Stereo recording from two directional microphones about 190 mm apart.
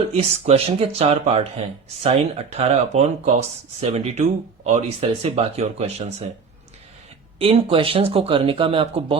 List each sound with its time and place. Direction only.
0.1 s speech: 35° right (ahead or behind)
7.3 s speech: 30° right (ahead or behind)